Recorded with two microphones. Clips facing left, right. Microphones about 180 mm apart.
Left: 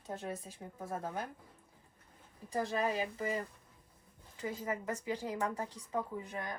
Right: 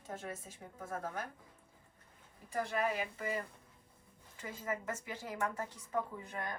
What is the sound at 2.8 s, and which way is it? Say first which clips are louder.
Speech: left 2 dB; 25° left (ahead or behind).